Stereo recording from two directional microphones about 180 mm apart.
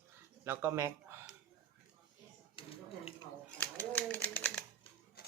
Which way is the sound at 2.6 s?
30° left (ahead or behind).